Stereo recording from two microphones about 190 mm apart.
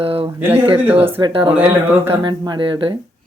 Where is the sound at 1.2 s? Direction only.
25° right (ahead or behind).